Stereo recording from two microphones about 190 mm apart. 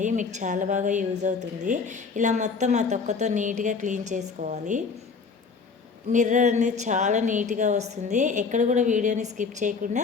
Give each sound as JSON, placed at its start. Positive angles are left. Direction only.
{"t": 0.0, "sound": "a woman's voice", "side_deg": -40}
{"t": 6.1, "sound": "a woman's voice", "side_deg": -40}